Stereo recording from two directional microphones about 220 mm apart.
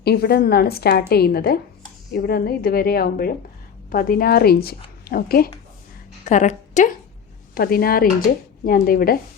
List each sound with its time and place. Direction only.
0.0 s a woman's voice: 45° left (ahead or behind)
6.2 s a woman's voice: 35° left (ahead or behind)